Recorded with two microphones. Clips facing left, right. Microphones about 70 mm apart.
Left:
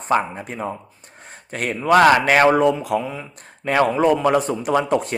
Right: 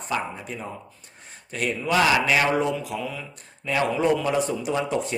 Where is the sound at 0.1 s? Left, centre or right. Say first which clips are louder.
Left 8 dB; left.